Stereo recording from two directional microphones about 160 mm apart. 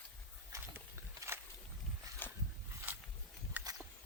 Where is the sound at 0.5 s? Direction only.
20° right (ahead or behind).